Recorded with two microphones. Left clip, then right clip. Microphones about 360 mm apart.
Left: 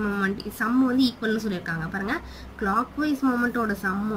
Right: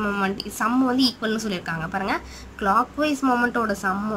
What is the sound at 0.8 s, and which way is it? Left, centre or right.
Speech, right.